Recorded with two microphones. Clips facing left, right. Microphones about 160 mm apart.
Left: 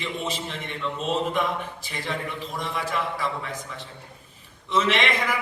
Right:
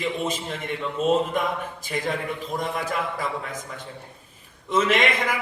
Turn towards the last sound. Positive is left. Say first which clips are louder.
# right 2 dB
turn(degrees=-45)  # may be behind; listen again after turning